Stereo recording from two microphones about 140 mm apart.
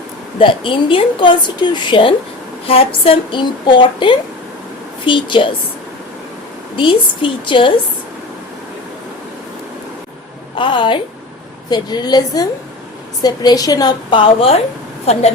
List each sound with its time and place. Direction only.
0.3 s a woman's voice: 35° left (ahead or behind)
6.7 s a woman's voice: 35° left (ahead or behind)
10.6 s a woman's voice: 35° left (ahead or behind)